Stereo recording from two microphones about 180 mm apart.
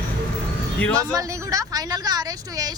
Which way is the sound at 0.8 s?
5° left (ahead or behind).